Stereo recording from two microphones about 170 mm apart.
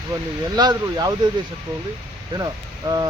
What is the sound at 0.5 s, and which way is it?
Speech, 25° right (ahead or behind).